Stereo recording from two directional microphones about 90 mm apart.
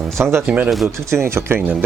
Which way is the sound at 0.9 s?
30° right (ahead or behind).